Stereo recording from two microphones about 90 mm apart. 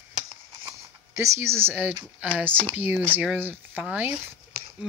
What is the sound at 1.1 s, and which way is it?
Speech, 35° right (ahead or behind).